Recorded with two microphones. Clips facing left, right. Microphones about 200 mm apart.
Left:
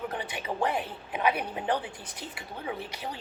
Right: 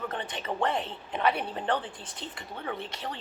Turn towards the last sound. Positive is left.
turn(degrees=5)  # may be behind; listen again after turning